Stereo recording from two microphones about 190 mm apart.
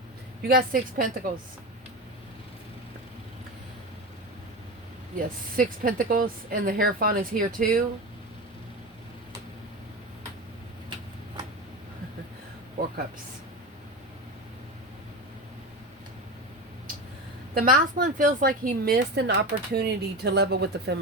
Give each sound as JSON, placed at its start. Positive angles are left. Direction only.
{"t": 0.4, "sound": "a woman's voice", "side_deg": -50}
{"t": 5.1, "sound": "a woman's voice", "side_deg": -45}
{"t": 17.5, "sound": "a woman's voice", "side_deg": -50}